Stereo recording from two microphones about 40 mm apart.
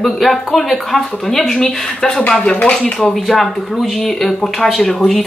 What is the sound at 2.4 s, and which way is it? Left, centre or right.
Speech, left.